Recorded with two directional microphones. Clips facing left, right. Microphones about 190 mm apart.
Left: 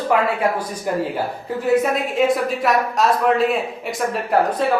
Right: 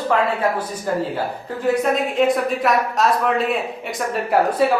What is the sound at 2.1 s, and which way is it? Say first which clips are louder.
Speech: even; centre (ahead or behind).